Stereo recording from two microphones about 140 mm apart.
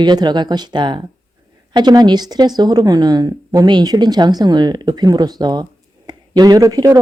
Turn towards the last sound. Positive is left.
turn(degrees=-30)  # may be behind; listen again after turning